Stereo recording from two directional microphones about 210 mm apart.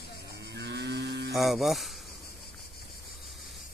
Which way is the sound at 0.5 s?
55° right (ahead or behind).